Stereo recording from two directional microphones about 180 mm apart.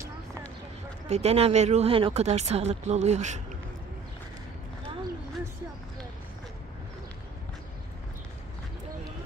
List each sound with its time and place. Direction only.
1.0 s speech: 35° right (ahead or behind)